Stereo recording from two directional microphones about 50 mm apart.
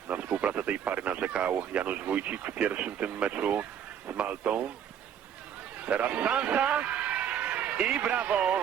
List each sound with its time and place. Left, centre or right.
0.1 s speech: right
5.8 s speech: right
6.7 s a sound: right
7.9 s speech: right